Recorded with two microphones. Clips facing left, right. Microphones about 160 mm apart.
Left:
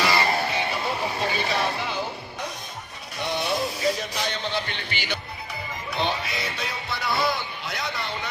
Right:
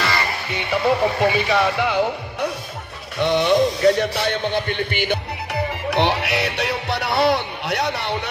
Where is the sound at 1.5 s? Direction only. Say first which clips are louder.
Right 8 dB; 70° right (ahead or behind).